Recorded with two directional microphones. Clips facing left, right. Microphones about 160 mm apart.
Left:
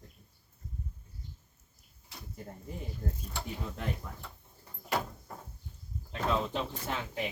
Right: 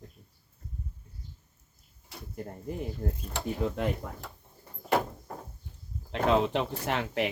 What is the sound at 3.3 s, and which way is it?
Speech, 90° right.